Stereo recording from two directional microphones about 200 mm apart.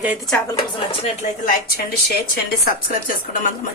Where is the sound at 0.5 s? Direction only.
25° left (ahead or behind); by 2.2 s 45° left (ahead or behind).